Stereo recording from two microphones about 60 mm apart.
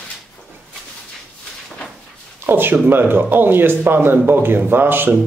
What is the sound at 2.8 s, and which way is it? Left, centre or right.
Speech, right.